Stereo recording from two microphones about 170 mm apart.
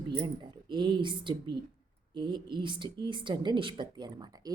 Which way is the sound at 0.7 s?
25° right (ahead or behind).